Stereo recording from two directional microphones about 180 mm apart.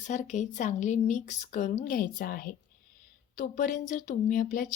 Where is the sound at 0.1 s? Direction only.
40° left (ahead or behind).